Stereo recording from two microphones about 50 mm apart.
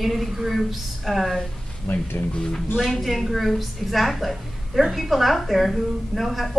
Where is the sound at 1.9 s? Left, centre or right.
Left.